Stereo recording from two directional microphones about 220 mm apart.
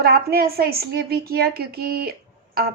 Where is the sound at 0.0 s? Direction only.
45° right (ahead or behind).